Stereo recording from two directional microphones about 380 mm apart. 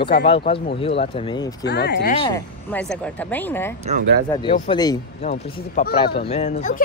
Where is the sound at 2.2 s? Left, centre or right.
Centre.